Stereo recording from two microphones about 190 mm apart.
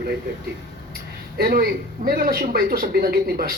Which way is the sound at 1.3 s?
55° right (ahead or behind).